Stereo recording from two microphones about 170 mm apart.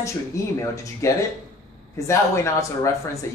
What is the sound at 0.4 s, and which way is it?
A man's voice, 20° left (ahead or behind).